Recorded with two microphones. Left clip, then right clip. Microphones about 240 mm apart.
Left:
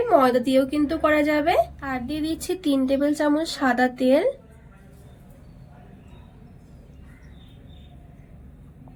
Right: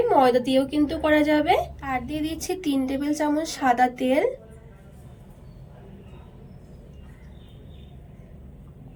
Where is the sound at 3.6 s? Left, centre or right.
Centre.